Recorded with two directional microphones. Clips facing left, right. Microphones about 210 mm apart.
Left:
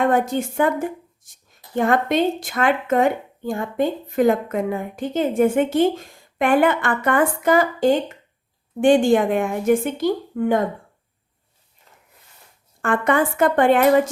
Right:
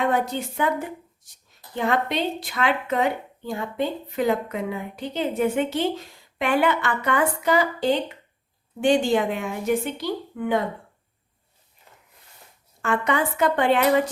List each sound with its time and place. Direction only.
0.0 s speech: 50° left (ahead or behind)
12.8 s speech: 50° left (ahead or behind)